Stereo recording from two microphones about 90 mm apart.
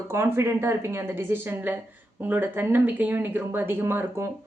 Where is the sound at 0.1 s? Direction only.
30° right (ahead or behind).